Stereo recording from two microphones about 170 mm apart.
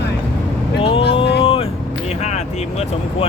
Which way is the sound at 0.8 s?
30° left (ahead or behind).